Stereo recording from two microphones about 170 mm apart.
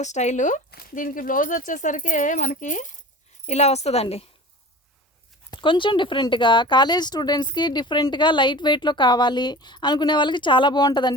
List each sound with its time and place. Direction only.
0.0 s speech: 45° left (ahead or behind)
0.7 s a woman's voice: 60° left (ahead or behind); by 4.3 s 35° left (ahead or behind)
5.5 s speech: 30° left (ahead or behind)